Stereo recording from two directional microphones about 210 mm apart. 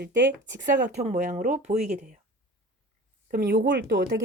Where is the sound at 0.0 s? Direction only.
55° right (ahead or behind).